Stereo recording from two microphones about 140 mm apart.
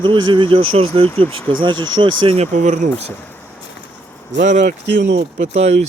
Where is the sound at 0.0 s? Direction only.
35° right (ahead or behind); by 2.9 s 60° right (ahead or behind).